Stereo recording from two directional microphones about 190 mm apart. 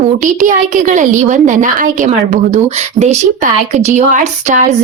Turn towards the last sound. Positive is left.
turn(degrees=-40)  # may be behind; listen again after turning